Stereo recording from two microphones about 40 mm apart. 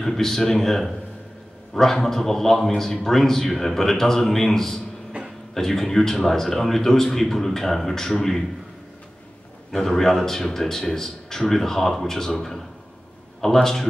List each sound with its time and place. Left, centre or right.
0.0 s a man's voice: centre
9.7 s a man's voice: centre